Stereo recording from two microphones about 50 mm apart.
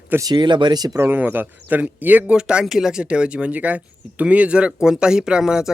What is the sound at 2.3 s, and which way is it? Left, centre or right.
Speech, centre.